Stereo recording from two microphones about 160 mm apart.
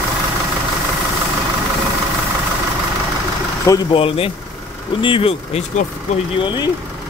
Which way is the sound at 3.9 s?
35° left (ahead or behind).